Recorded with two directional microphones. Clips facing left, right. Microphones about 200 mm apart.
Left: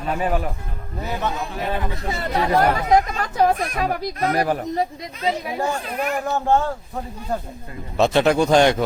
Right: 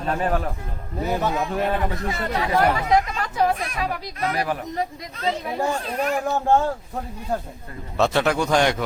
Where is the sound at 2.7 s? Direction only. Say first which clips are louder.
Left 2 dB; 45° left (ahead or behind).